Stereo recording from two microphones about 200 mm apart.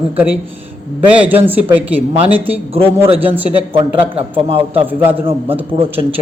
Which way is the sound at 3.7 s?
25° right (ahead or behind).